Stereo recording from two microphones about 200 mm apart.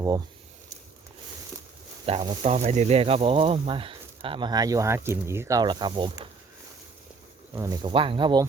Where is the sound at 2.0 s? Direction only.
25° right (ahead or behind).